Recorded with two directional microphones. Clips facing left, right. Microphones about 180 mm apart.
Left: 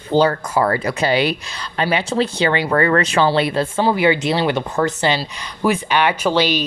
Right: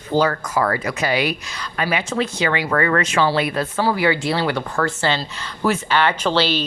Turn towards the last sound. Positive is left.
turn(degrees=15)  # may be behind; listen again after turning